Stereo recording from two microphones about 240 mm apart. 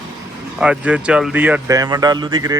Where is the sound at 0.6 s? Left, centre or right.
Centre.